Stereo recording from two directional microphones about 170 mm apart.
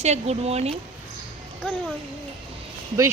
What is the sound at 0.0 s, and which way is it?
Speech, 40° right (ahead or behind).